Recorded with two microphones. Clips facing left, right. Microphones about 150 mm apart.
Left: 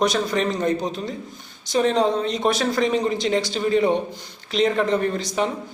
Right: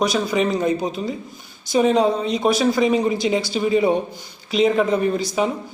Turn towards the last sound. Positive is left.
turn(degrees=-5)  # may be behind; listen again after turning